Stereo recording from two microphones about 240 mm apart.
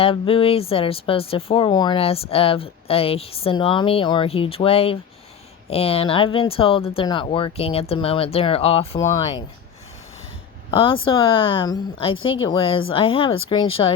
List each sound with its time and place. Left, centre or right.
0.0 s speech: left
9.0 s speech: centre
10.7 s speech: left